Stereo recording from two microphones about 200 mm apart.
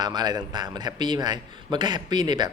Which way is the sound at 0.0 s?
20° right (ahead or behind).